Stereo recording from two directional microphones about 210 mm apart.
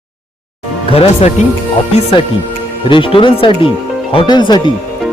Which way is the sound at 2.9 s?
25° left (ahead or behind).